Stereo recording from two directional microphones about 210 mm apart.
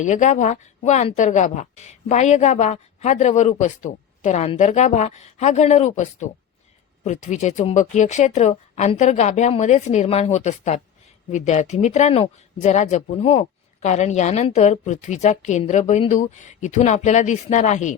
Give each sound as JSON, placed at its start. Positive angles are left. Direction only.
{"t": 0.0, "sound": "speech", "side_deg": 35}